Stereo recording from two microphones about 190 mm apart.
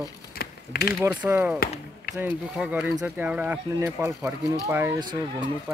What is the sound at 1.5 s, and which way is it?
Speech, 50° left (ahead or behind).